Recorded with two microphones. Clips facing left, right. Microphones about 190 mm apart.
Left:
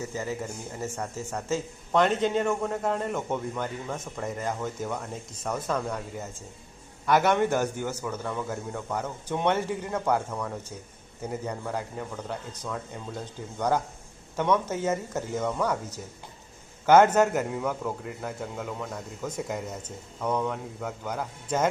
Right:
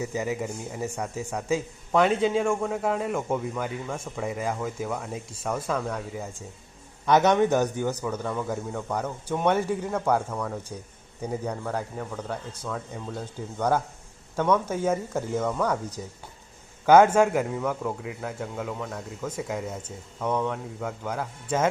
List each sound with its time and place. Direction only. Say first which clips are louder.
0.0 s a man's voice: right 3 dB; 15° right (ahead or behind)
7.1 s a man's voice: right 3 dB; 20° right (ahead or behind)
9.6 s speech: right 2 dB; 10° left (ahead or behind)
10.2 s speech: right 2 dB; 5° right (ahead or behind)
11.3 s a man's voice: right 2 dB; 5° left (ahead or behind)
13.6 s speech: right 1 dB; 10° left (ahead or behind)
14.7 s speech: right 2 dB; 10° right (ahead or behind)
15.4 s a man's voice: left 1 dB; 5° left (ahead or behind)
16.8 s speech: right 2 dB; 10° right (ahead or behind)
17.3 s a man's voice: right 2 dB; 5° left (ahead or behind)